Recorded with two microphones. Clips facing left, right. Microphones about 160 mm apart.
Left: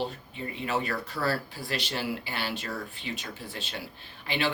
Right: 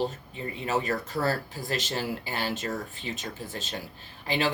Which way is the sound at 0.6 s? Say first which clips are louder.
Right 2 dB; 40° right (ahead or behind).